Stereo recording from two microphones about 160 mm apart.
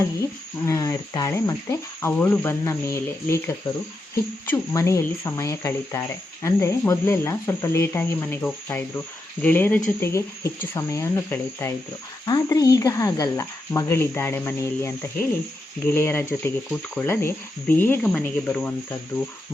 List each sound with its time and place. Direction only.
0.2 s speech: 20° left (ahead or behind)